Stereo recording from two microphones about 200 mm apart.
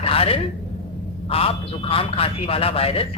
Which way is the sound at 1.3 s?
30° left (ahead or behind).